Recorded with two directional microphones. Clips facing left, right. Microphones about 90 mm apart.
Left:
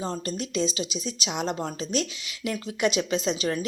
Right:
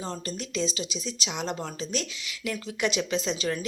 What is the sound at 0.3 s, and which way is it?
Speech, 20° left (ahead or behind).